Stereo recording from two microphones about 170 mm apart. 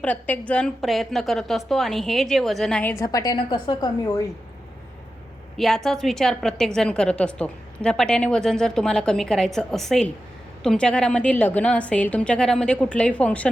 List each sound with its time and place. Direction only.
0.0 s a woman's voice: 10° left (ahead or behind)
2.9 s a woman's voice: 20° left (ahead or behind)
5.5 s a woman's voice: centre (ahead or behind)